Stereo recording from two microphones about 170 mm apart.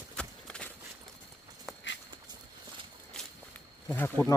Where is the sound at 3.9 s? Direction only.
10° left (ahead or behind).